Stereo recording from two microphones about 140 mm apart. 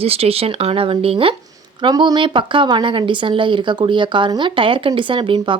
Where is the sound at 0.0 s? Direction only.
45° right (ahead or behind).